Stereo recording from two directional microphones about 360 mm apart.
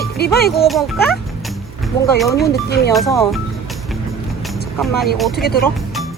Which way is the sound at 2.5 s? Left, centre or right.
Left.